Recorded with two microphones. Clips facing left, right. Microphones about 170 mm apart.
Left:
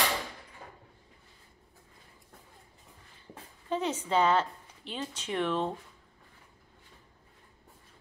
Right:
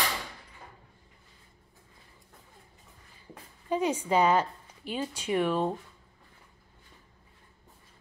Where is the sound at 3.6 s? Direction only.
10° right (ahead or behind).